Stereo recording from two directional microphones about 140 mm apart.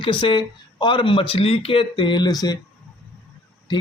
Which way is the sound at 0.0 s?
35° left (ahead or behind).